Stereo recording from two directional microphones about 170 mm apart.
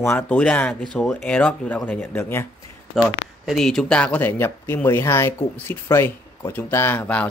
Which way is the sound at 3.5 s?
Centre (ahead or behind).